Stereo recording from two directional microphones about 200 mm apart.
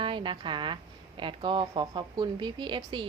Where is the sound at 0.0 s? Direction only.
25° right (ahead or behind).